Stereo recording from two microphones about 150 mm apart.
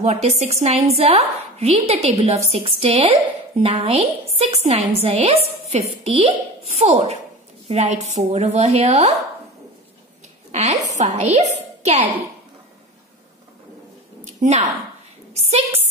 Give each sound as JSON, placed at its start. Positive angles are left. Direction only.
{"t": 0.0, "sound": "a woman's voice", "side_deg": -45}
{"t": 10.5, "sound": "a woman's voice", "side_deg": -50}
{"t": 14.4, "sound": "a woman's voice", "side_deg": -55}
{"t": 15.3, "sound": "a woman's voice", "side_deg": -45}